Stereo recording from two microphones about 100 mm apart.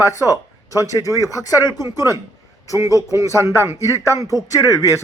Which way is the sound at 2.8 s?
35° left (ahead or behind).